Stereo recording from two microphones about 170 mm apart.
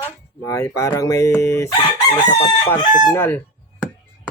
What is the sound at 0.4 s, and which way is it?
Chicken, 20° left (ahead or behind).